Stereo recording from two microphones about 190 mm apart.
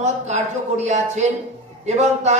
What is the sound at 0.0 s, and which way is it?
Speech, 35° right (ahead or behind).